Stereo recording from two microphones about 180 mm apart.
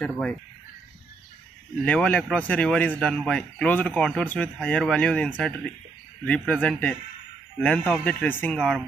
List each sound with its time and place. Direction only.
0.0 s speech: 5° left (ahead or behind)
1.9 s speech: 5° left (ahead or behind)